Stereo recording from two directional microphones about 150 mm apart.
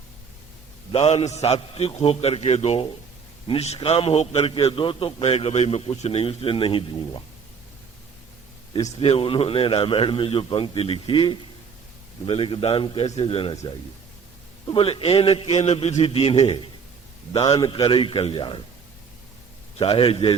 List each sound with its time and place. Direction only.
0.9 s a man's voice: 45° left (ahead or behind)
9.0 s a man's voice: 40° left (ahead or behind)
17.8 s a man's voice: 35° left (ahead or behind)
19.8 s a man's voice: 40° left (ahead or behind)